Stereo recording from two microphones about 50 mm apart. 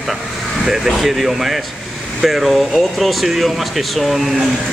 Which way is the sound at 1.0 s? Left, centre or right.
Centre.